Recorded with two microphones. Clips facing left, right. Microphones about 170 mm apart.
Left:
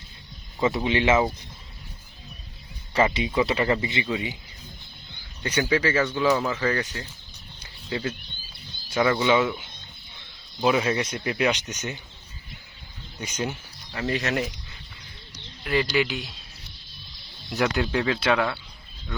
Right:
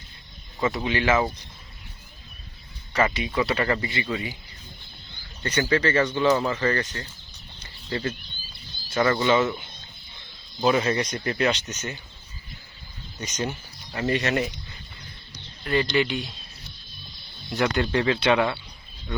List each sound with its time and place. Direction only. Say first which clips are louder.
0.9 s speech: left 1 dB; 25° left (ahead or behind)
2.9 s speech: left 2 dB; 25° left (ahead or behind)
3.6 s speech: left 1 dB; 10° left (ahead or behind)
5.4 s speech: even; 10° left (ahead or behind)
7.6 s a sound: right 1 dB; 10° left (ahead or behind)
8.9 s speech: even; 10° left (ahead or behind)
10.6 s speech: right 1 dB; 5° left (ahead or behind)
13.1 s speech: even; 5° left (ahead or behind)
15.6 s speech: right 1 dB; 5° left (ahead or behind)
17.5 s speech: right 1 dB; 5° left (ahead or behind)